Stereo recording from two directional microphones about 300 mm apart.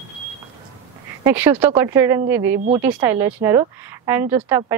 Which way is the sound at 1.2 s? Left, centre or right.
Centre.